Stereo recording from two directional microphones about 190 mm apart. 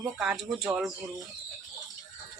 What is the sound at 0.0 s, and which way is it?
Speech, 5° right (ahead or behind).